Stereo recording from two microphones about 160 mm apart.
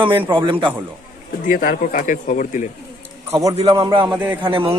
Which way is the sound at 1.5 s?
60° left (ahead or behind).